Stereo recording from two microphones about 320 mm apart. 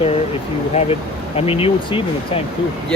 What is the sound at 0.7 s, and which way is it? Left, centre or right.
Speech, centre.